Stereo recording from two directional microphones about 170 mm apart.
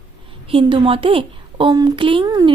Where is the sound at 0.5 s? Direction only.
35° right (ahead or behind).